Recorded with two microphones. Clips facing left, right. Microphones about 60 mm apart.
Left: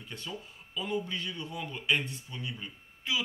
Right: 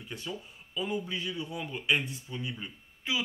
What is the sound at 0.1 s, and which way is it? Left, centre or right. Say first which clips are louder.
Speech: right 2 dB; centre.